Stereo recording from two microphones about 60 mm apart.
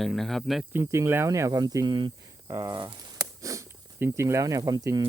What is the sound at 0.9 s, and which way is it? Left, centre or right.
Speech, right.